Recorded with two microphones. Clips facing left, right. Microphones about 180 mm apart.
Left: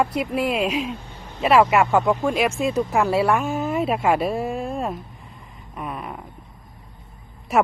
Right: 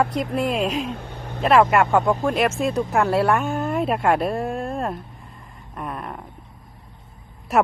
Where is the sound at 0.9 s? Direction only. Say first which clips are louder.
Right 3 dB; 65° right (ahead or behind).